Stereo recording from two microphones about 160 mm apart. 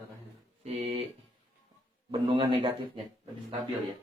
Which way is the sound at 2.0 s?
30° right (ahead or behind).